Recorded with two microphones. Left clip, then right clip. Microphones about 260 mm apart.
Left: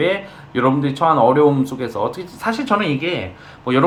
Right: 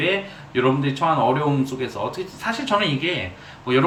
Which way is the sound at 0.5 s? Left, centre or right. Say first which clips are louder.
Left 3 dB; left.